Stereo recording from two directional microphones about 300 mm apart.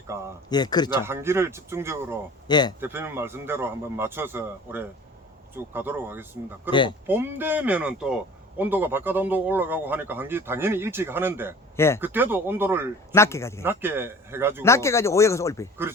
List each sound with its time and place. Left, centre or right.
0.1 s speech: centre
0.5 s speech: centre
1.0 s speech: centre
2.5 s speech: centre
2.8 s speech: centre
6.7 s speech: centre
7.1 s speech: centre
13.1 s speech: centre
13.7 s speech: centre
14.6 s speech: centre